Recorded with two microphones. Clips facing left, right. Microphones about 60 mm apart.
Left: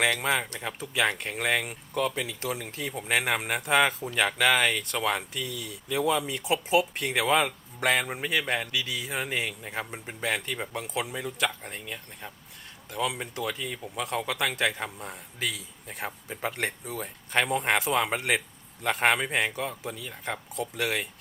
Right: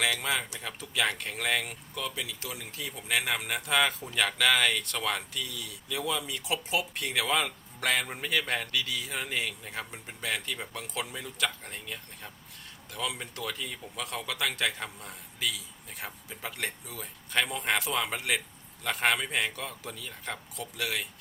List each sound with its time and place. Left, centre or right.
0.2 s speech: left
2.0 s speech: left
17.4 s speech: left
20.6 s speech: left